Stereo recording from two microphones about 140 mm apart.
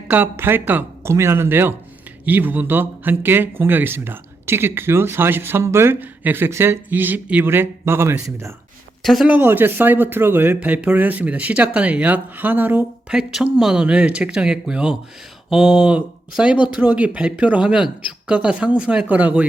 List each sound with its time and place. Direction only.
0.1 s speech: 15° right (ahead or behind)
9.0 s speech: centre (ahead or behind)
9.3 s speech: 15° right (ahead or behind)